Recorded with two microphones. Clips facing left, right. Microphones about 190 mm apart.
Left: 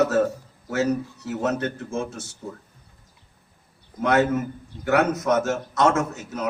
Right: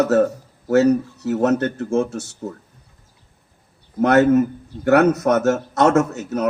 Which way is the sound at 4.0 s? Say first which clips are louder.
Right 7 dB; 65° right (ahead or behind).